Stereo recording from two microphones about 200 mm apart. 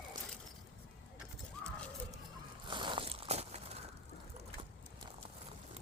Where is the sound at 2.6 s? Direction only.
25° right (ahead or behind).